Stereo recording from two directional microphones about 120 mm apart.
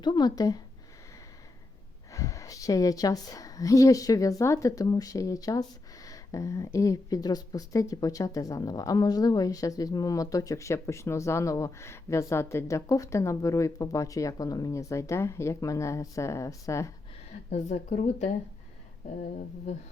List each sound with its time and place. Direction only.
0.0 s speech: 35° left (ahead or behind)
2.1 s a woman's voice: 25° left (ahead or behind)
17.5 s speech: 85° left